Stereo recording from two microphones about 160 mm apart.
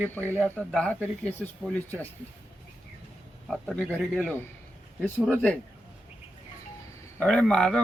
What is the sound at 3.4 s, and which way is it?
A man's voice, centre (ahead or behind).